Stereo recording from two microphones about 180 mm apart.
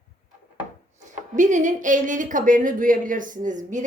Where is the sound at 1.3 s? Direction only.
45° right (ahead or behind).